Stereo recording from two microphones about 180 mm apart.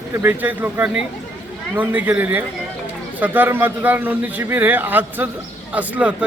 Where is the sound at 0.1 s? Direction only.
15° right (ahead or behind).